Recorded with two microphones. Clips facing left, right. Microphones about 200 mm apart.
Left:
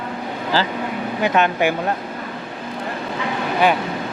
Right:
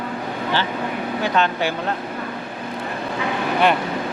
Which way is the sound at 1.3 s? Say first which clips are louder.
Left 3 dB; 15° left (ahead or behind).